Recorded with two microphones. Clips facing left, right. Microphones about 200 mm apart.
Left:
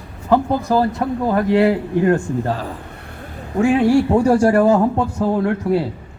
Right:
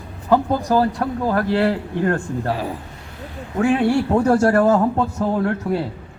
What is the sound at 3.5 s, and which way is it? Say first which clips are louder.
Speech: left 3 dB; 10° left (ahead or behind).